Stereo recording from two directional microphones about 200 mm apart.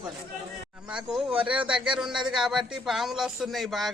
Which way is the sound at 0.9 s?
5° right (ahead or behind).